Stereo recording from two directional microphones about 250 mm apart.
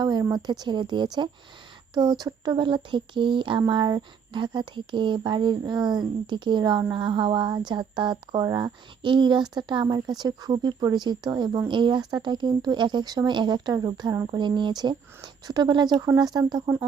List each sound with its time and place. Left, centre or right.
0.0 s speech: centre